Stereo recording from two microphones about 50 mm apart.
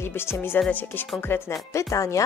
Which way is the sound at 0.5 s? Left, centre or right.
Left.